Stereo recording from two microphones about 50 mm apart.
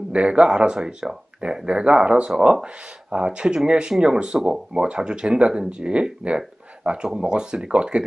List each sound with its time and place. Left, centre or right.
0.1 s speech: right